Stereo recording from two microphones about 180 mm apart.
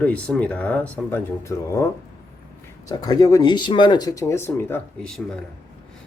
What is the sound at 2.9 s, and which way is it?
Speech, 20° left (ahead or behind).